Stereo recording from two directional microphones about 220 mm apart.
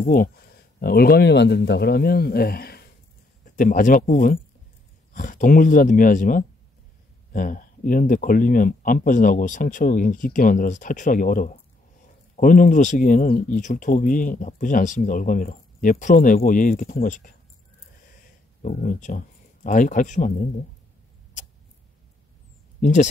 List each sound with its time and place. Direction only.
0.0 s speech: 40° left (ahead or behind)
18.6 s speech: 35° left (ahead or behind)
22.8 s speech: 35° left (ahead or behind)